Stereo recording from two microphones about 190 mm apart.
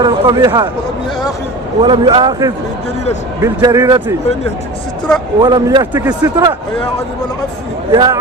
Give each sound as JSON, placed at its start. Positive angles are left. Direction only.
{"t": 0.0, "sound": "a man's voice", "side_deg": -20}
{"t": 1.8, "sound": "a man's voice", "side_deg": -25}
{"t": 5.4, "sound": "a man's voice", "side_deg": -20}
{"t": 7.9, "sound": "a man's voice", "side_deg": -20}